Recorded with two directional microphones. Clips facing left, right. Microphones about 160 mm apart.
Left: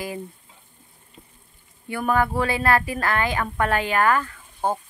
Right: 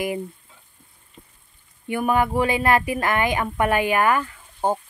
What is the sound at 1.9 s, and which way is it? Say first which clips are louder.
Speech: right 1 dB; 15° right (ahead or behind).